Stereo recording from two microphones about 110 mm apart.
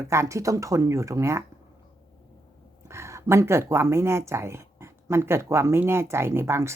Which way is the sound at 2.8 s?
25° right (ahead or behind).